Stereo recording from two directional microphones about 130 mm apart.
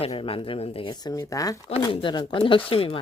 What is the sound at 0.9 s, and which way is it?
Speech, 30° left (ahead or behind).